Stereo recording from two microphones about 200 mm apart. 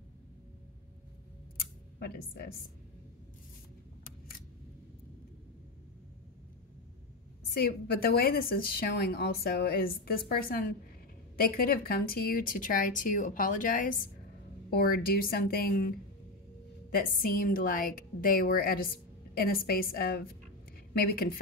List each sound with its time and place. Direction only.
1.6 s a sound: 50° left (ahead or behind)
7.4 s a woman's voice: 50° left (ahead or behind)
16.9 s a woman's voice: 45° left (ahead or behind)